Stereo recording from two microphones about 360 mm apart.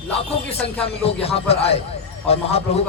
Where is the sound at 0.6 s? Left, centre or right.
Centre.